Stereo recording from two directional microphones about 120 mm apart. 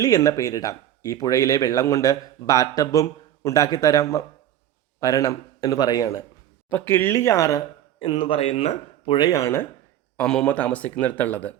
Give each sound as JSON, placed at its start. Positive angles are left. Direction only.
{"t": 0.0, "sound": "speech", "side_deg": 25}
{"t": 6.7, "sound": "speech", "side_deg": 15}
{"t": 8.0, "sound": "speech", "side_deg": 40}
{"t": 8.4, "sound": "speech", "side_deg": 60}
{"t": 9.1, "sound": "speech", "side_deg": 40}
{"t": 9.4, "sound": "speech", "side_deg": 20}
{"t": 10.2, "sound": "speech", "side_deg": 5}